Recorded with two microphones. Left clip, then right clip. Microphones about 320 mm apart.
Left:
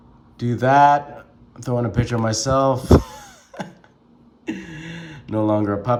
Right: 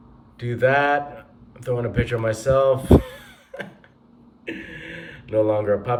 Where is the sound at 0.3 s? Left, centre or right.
Centre.